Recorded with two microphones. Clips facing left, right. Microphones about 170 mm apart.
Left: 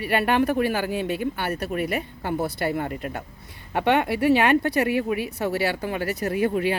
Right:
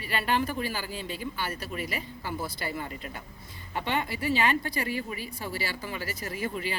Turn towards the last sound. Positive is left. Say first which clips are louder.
# left 10 dB
turn(degrees=60)  # may be behind; listen again after turning